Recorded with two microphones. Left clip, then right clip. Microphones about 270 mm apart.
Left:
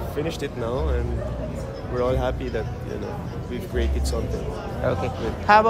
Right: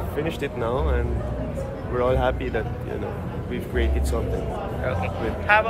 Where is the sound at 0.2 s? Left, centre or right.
Centre.